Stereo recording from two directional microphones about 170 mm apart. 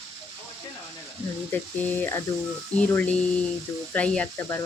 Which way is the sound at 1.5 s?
10° left (ahead or behind).